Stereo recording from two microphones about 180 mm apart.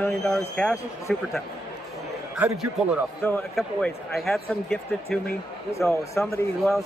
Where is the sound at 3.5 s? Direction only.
Centre (ahead or behind).